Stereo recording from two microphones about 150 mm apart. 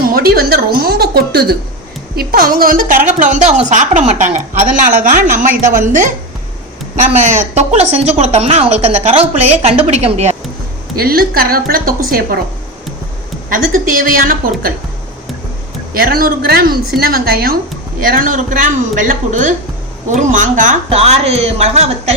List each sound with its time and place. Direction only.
0.0 s a woman's voice: 90° right
2.1 s a woman's voice: 70° right (ahead or behind); by 4.3 s 50° right (ahead or behind)
4.9 s speech: 65° right (ahead or behind); by 10.3 s 45° right (ahead or behind)
10.9 s a woman's voice: 85° right
13.5 s a woman's voice: 70° right (ahead or behind)
15.9 s a woman's voice: 85° right
18.0 s speech: 70° right (ahead or behind); by 22.1 s 45° right (ahead or behind)